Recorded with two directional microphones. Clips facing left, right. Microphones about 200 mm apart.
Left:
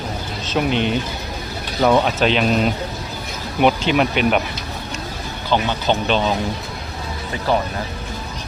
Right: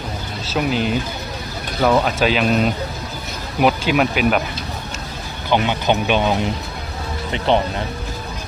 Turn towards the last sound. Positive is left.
turn(degrees=-25)  # may be behind; listen again after turning